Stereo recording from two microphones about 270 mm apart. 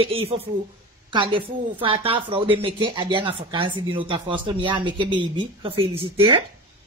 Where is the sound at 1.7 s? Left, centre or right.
Centre.